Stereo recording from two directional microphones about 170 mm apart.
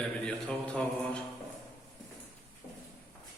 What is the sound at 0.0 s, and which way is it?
Mantra, 5° left (ahead or behind).